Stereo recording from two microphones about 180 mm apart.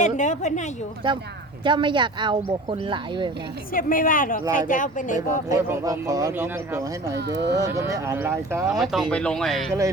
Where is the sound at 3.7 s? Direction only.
50° left (ahead or behind).